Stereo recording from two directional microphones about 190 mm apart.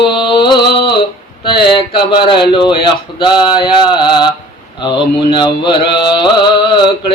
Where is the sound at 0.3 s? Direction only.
25° left (ahead or behind).